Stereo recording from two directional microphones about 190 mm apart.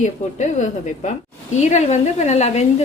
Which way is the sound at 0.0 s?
35° left (ahead or behind).